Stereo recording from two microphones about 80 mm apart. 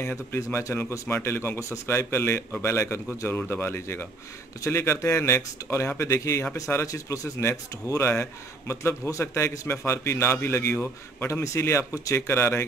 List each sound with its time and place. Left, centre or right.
0.0 s a man's voice: left